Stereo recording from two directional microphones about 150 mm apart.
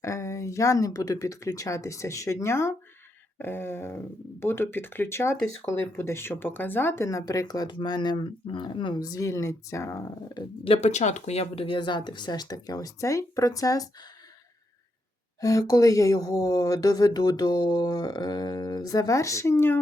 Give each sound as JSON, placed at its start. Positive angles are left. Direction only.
{"t": 0.0, "sound": "speech", "side_deg": 20}
{"t": 10.6, "sound": "speech", "side_deg": 40}
{"t": 15.4, "sound": "speech", "side_deg": 20}